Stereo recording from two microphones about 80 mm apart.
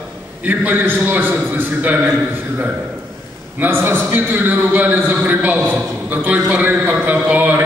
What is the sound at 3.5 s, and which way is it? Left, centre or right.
A man's voice, right.